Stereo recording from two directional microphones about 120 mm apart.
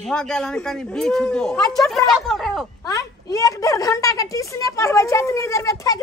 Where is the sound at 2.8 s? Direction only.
30° left (ahead or behind).